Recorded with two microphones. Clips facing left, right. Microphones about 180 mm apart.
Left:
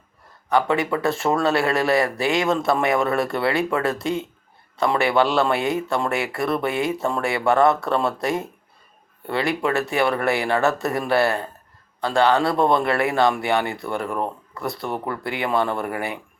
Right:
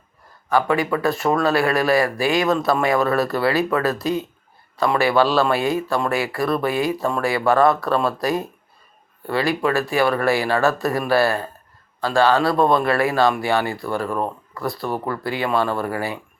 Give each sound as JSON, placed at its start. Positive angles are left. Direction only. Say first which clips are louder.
{"t": 0.5, "sound": "speech", "louder": "right 1 dB", "side_deg": 25}